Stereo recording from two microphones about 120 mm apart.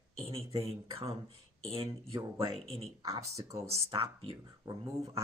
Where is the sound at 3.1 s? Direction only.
25° right (ahead or behind).